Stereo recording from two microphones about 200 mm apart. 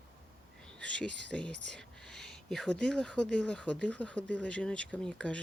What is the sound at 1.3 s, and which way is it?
Speech, 5° left (ahead or behind).